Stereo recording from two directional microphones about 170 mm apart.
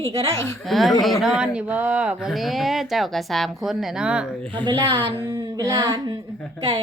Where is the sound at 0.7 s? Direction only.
Centre (ahead or behind).